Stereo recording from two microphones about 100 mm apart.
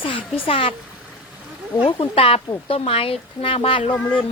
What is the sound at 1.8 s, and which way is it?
Speech, 60° left (ahead or behind).